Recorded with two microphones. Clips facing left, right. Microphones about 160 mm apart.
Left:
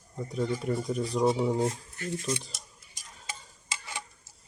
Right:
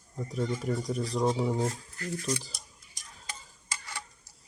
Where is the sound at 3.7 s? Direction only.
20° left (ahead or behind).